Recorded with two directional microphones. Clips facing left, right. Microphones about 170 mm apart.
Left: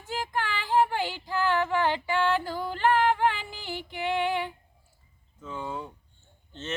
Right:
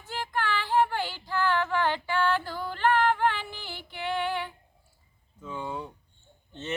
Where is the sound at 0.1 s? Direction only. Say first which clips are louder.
Even; 15° left (ahead or behind).